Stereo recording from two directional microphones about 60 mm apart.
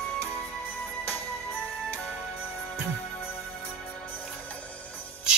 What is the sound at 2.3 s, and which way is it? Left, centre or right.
Music, left.